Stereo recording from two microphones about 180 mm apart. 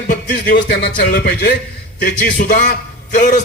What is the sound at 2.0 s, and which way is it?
A man's voice, 45° left (ahead or behind).